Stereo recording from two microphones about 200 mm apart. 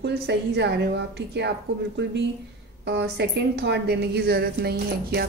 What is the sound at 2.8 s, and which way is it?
A woman's voice, 60° right (ahead or behind).